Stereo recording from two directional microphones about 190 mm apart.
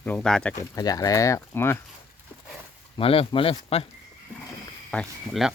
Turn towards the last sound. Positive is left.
turn(degrees=0)  # may be behind; listen again after turning